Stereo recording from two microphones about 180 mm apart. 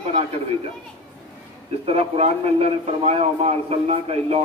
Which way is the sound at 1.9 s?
35° right (ahead or behind).